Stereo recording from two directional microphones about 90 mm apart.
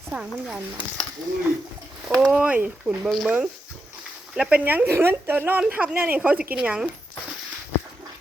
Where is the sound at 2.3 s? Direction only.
15° right (ahead or behind).